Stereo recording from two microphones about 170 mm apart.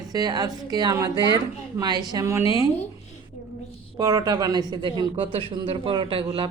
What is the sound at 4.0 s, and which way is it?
Speech, 20° right (ahead or behind).